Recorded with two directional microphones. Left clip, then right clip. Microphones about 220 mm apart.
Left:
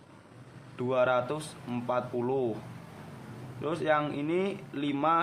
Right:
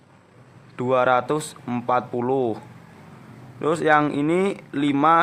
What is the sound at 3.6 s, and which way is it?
Speech, 45° right (ahead or behind).